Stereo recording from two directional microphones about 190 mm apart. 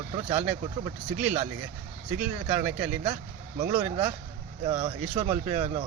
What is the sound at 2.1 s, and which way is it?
Speech, 40° right (ahead or behind).